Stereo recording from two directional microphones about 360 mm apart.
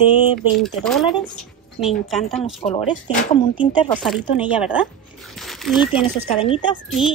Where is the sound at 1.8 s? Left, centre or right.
Centre.